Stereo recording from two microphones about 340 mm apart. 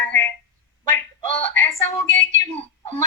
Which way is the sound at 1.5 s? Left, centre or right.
Centre.